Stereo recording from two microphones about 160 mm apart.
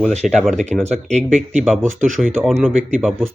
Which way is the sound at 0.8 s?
45° right (ahead or behind).